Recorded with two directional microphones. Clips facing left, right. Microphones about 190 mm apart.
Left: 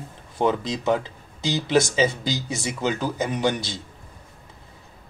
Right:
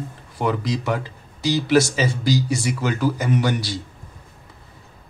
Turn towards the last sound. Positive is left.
turn(degrees=20)  # may be behind; listen again after turning